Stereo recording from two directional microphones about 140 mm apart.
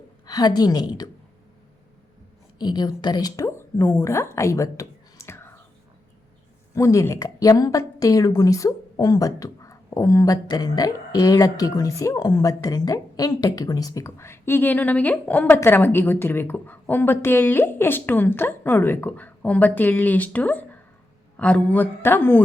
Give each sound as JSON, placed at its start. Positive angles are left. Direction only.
{"t": 0.3, "sound": "a woman's voice", "side_deg": 30}
{"t": 2.6, "sound": "a woman's voice", "side_deg": 30}
{"t": 4.4, "sound": "whispering", "side_deg": 20}
{"t": 6.7, "sound": "a woman's voice", "side_deg": 20}